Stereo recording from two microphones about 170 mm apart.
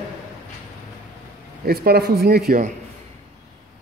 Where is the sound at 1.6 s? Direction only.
65° right (ahead or behind).